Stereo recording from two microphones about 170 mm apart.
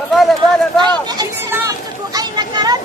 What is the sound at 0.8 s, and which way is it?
Speech, 25° right (ahead or behind).